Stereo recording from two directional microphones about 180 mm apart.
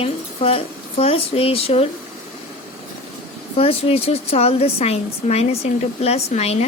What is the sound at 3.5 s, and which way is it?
A woman's voice, 35° left (ahead or behind).